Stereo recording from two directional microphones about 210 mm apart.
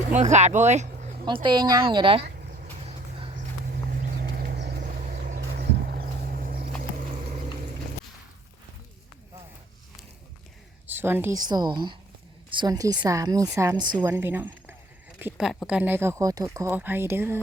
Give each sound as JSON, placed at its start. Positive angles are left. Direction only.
{"t": 0.2, "sound": "speech", "side_deg": -35}
{"t": 1.2, "sound": "speech", "side_deg": -20}
{"t": 2.8, "sound": "vehicle", "side_deg": -30}
{"t": 4.2, "sound": "a sound", "side_deg": -50}
{"t": 4.8, "sound": "vehicle", "side_deg": -40}
{"t": 5.4, "sound": "a sound", "side_deg": -50}
{"t": 10.8, "sound": "speech", "side_deg": -10}